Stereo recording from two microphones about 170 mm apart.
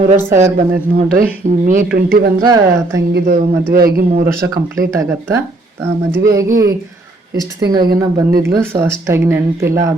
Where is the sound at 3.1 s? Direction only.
75° right (ahead or behind).